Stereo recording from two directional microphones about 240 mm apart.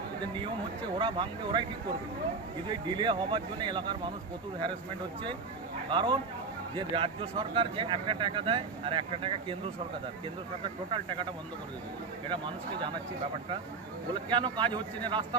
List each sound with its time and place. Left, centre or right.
0.9 s speech: right
2.6 s speech: centre
5.9 s speech: right
12.3 s speech: centre
14.1 s speech: centre